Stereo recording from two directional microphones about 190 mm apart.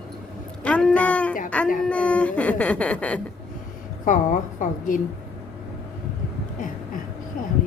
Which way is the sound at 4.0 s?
45° left (ahead or behind).